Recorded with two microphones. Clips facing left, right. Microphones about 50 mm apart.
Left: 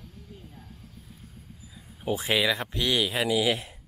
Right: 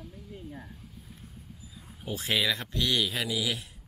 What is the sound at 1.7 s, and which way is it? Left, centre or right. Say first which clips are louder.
Speech: left 7 dB; centre.